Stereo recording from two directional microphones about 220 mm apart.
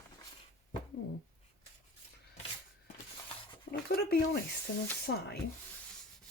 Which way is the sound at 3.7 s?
45° left (ahead or behind).